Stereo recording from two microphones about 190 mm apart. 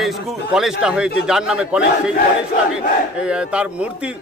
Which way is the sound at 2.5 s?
45° left (ahead or behind).